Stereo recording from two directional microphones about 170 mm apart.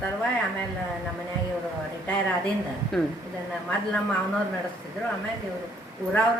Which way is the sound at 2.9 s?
5° left (ahead or behind).